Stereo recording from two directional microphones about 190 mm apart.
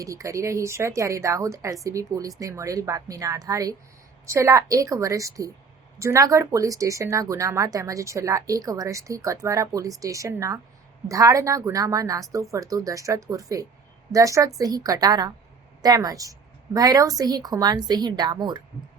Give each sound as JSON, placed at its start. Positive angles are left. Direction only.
{"t": 0.0, "sound": "a woman's voice", "side_deg": -15}